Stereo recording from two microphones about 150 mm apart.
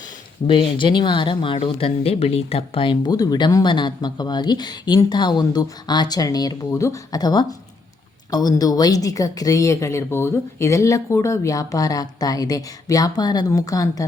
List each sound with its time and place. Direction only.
0.4 s speech: 35° left (ahead or behind)